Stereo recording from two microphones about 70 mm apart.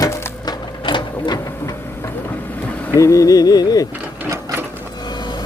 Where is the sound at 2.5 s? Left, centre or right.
Left.